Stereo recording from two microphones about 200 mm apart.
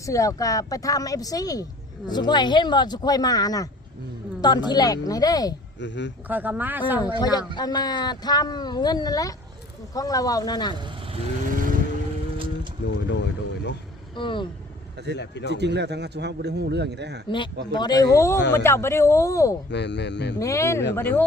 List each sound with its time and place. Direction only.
0.0 s speech: 15° left (ahead or behind)
5.8 s speech: 65° left (ahead or behind)
6.2 s speech: 10° right (ahead or behind)
7.0 s speech: 20° left (ahead or behind)
11.1 s vehicle: 35° right (ahead or behind)
12.9 s speech: 60° left (ahead or behind)
14.2 s speech: 25° left (ahead or behind)
15.2 s speech: 60° left (ahead or behind)
15.5 s a man's voice: 60° right (ahead or behind)
17.2 s speech: 25° left (ahead or behind)
19.7 s speech: 60° left (ahead or behind)
20.4 s speech: 15° left (ahead or behind)